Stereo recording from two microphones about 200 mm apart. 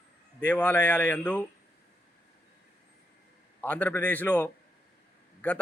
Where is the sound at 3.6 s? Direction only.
10° left (ahead or behind).